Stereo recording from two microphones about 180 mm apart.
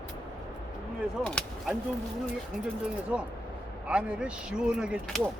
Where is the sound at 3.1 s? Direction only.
10° right (ahead or behind).